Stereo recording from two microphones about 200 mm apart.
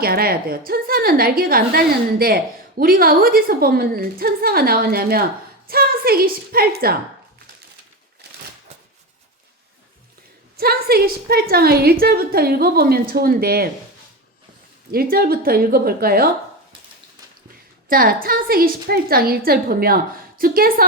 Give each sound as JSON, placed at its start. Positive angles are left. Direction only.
{"t": 0.0, "sound": "a woman's voice", "side_deg": -50}
{"t": 10.6, "sound": "a woman's voice", "side_deg": -50}
{"t": 14.9, "sound": "a woman's voice", "side_deg": -50}
{"t": 17.8, "sound": "a woman's voice", "side_deg": -45}